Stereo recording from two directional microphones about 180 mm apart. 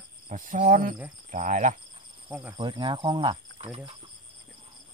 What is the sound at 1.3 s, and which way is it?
Speech, 45° right (ahead or behind).